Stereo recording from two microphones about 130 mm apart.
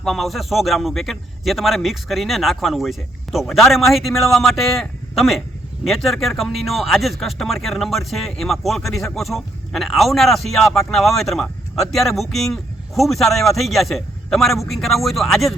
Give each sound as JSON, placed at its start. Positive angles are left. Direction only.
{"t": 0.0, "sound": "speech", "side_deg": 0}